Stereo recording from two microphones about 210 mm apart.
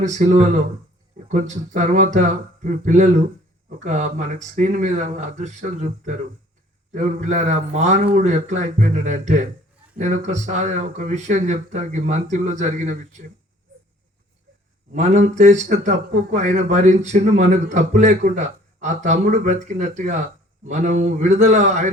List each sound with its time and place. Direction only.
0.0 s a man's voice: 35° right (ahead or behind)
14.9 s a man's voice: 35° right (ahead or behind)